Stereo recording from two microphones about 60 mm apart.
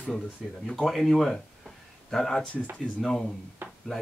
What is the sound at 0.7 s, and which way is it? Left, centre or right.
Speech, centre.